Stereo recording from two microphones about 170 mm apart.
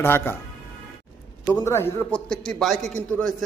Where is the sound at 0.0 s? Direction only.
15° left (ahead or behind).